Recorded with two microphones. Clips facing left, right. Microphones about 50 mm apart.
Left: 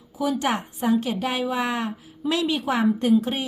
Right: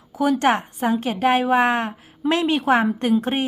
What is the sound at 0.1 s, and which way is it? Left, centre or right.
A woman's voice, right.